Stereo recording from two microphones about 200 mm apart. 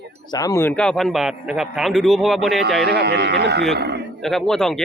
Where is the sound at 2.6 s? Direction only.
55° right (ahead or behind).